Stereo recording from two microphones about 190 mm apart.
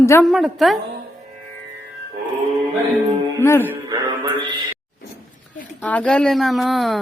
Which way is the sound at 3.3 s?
15° left (ahead or behind).